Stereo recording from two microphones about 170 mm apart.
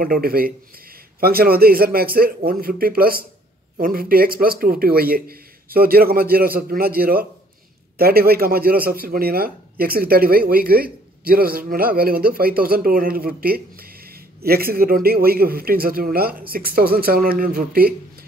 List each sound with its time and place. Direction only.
0.0 s speech: 60° right (ahead or behind)